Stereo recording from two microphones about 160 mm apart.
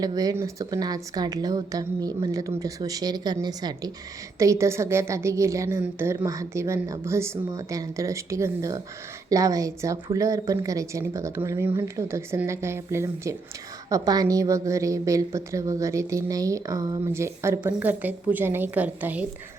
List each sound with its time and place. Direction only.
0.0 s a woman's voice: 25° right (ahead or behind)